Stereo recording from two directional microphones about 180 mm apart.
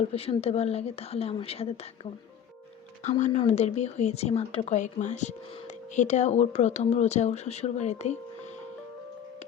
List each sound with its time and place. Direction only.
0.1 s speech: 35° left (ahead or behind)
3.0 s speech: 40° left (ahead or behind)